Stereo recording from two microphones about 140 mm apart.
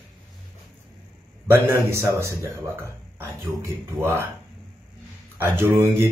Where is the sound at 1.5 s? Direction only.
20° right (ahead or behind).